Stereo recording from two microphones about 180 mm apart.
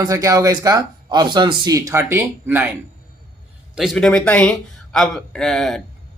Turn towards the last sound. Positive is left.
turn(degrees=0)  # may be behind; listen again after turning